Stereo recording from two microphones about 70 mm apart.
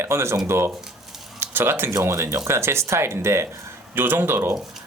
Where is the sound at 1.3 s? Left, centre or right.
Right.